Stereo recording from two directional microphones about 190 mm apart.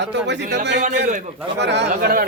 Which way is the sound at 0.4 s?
65° right (ahead or behind).